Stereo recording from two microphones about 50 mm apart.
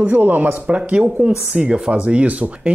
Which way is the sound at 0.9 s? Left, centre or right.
Right.